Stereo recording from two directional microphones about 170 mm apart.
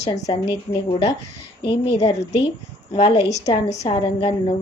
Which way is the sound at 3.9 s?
25° left (ahead or behind).